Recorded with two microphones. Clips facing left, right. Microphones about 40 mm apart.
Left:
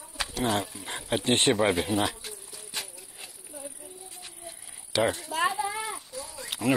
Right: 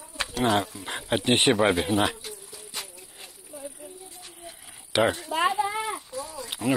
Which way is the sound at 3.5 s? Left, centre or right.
Centre.